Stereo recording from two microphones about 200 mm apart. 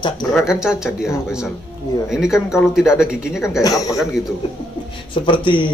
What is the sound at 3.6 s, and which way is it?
Speech, 15° left (ahead or behind).